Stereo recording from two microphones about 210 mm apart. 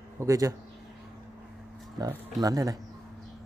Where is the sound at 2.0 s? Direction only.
15° right (ahead or behind).